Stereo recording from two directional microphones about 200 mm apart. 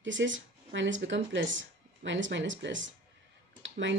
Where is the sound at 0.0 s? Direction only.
65° right (ahead or behind).